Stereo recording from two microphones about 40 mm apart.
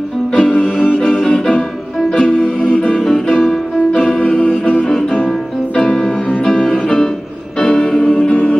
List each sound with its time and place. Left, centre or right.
0.3 s music: left
1.3 s music: left
2.9 s music: centre
4.2 s music: left
5.9 s music: centre